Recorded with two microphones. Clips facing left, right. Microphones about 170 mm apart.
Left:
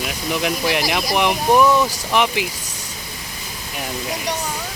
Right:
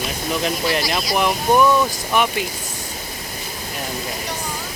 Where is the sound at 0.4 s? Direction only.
15° left (ahead or behind).